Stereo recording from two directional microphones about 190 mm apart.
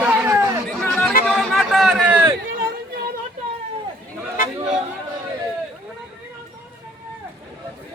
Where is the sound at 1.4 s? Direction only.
Centre (ahead or behind).